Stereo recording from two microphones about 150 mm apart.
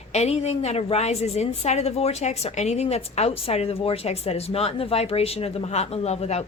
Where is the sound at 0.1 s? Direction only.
45° left (ahead or behind).